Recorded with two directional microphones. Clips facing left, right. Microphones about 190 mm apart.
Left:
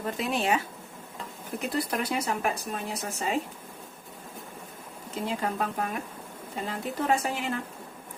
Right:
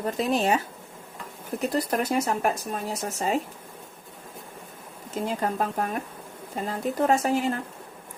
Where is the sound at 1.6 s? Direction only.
45° right (ahead or behind).